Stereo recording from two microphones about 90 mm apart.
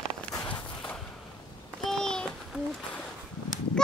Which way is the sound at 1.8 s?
5° left (ahead or behind).